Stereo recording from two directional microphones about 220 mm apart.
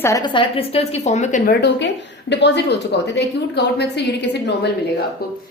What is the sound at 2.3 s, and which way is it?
A woman's voice, 50° left (ahead or behind).